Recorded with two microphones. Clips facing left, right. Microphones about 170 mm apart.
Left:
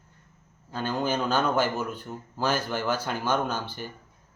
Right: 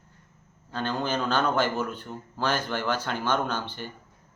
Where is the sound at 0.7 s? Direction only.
10° left (ahead or behind).